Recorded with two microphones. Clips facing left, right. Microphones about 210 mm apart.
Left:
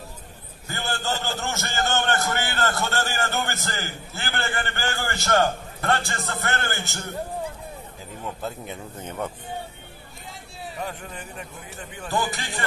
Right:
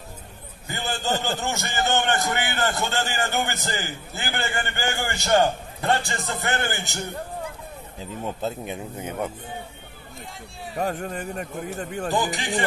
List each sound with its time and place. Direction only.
0.7 s a sound: 15° right (ahead or behind)
1.2 s a man's voice: 15° right (ahead or behind)
8.4 s speech: 20° right (ahead or behind)
10.8 s speech: 45° right (ahead or behind)
12.1 s a man's voice: 15° right (ahead or behind)